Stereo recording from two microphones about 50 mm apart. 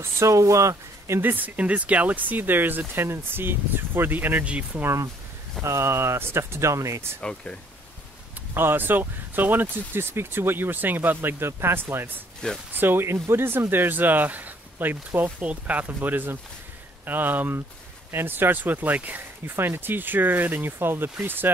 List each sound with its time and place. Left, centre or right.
0.0 s speech: right
1.2 s speech: right
4.5 s speech: right
5.6 s speech: right
7.2 s speech: centre
8.5 s speech: right
12.4 s speech: centre
12.7 s speech: right
19.5 s speech: right